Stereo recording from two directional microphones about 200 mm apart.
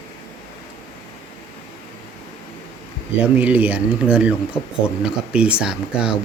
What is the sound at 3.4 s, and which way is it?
A man's voice, 5° right (ahead or behind).